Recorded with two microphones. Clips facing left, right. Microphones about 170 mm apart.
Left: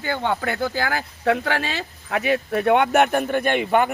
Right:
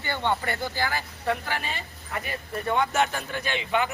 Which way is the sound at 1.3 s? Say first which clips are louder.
Left 7 dB; 90° left.